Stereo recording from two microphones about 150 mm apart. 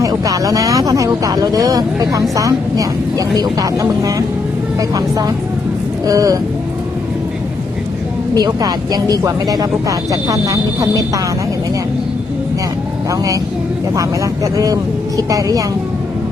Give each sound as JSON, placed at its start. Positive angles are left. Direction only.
{"t": 0.0, "sound": "speech", "side_deg": -25}
{"t": 8.4, "sound": "speech", "side_deg": -25}
{"t": 13.1, "sound": "speech", "side_deg": -20}